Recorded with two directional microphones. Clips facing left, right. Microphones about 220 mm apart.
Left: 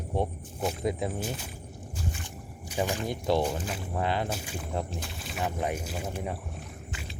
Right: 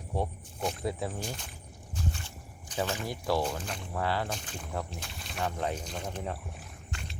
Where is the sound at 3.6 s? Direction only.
5° left (ahead or behind).